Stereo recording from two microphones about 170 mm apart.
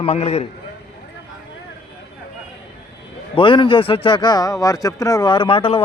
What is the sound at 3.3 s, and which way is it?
A man's voice, 30° left (ahead or behind).